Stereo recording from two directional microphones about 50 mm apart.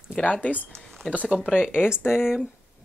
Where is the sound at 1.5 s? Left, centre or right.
Centre.